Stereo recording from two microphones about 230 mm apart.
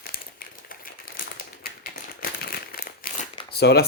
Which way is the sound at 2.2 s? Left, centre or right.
Left.